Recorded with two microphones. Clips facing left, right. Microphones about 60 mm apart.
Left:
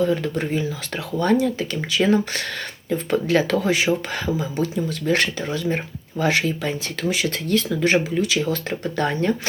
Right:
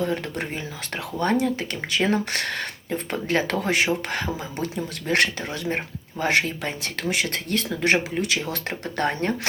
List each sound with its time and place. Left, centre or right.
0.0 s speech: right
2.9 s speech: right